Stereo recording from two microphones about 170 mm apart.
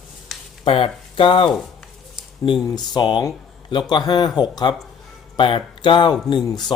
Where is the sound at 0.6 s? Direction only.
30° left (ahead or behind).